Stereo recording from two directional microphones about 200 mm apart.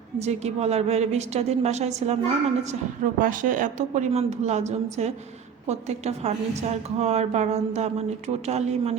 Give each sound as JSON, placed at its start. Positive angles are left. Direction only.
{"t": 0.2, "sound": "a woman's voice", "side_deg": -35}
{"t": 3.2, "sound": "a woman's voice", "side_deg": -40}